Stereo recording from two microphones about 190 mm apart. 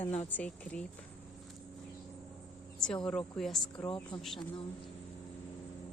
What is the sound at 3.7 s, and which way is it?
Speech, 30° left (ahead or behind).